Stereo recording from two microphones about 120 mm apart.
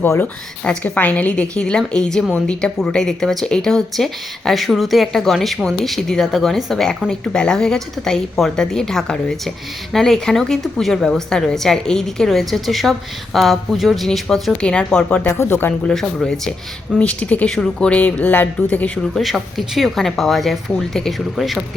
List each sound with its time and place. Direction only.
0.0 s a woman's voice: 15° left (ahead or behind)
15.3 s speech: 20° left (ahead or behind)
15.9 s a woman's voice: 5° left (ahead or behind)
19.1 s a woman's voice: centre (ahead or behind)